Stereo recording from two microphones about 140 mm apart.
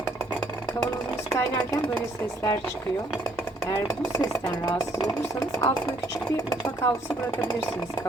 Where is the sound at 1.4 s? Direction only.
25° left (ahead or behind).